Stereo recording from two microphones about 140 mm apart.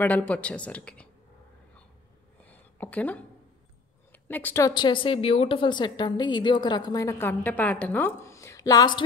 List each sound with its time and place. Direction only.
0.0 s a woman's voice: 10° left (ahead or behind)
2.4 s a sound: 10° left (ahead or behind)
4.1 s speech: 15° left (ahead or behind)
4.6 s a woman's voice: 35° left (ahead or behind)
7.1 s a woman's voice: 15° left (ahead or behind)